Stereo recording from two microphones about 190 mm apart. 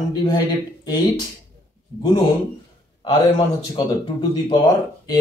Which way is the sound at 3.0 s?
25° left (ahead or behind).